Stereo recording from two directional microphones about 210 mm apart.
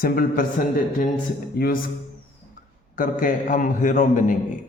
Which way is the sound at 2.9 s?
40° left (ahead or behind).